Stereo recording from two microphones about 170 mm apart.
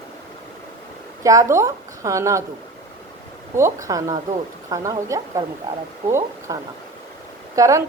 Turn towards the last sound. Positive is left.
turn(degrees=-20)  # may be behind; listen again after turning